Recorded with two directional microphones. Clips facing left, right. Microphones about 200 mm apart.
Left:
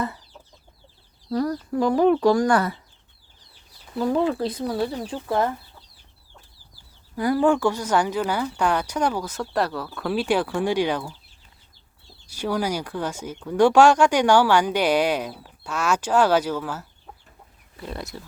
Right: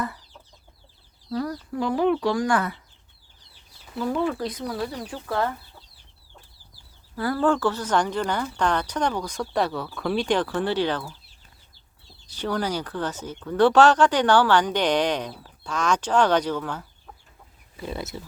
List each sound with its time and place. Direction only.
1.3 s speech: 40° left (ahead or behind)
4.2 s speech: 30° left (ahead or behind)
7.2 s speech: 15° left (ahead or behind)
12.2 s speech: 10° left (ahead or behind)